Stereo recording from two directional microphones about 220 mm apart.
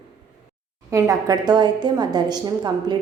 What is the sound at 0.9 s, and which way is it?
A woman's voice, 15° right (ahead or behind).